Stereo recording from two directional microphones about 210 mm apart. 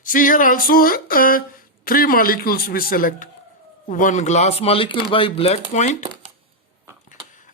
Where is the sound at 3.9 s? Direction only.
35° left (ahead or behind).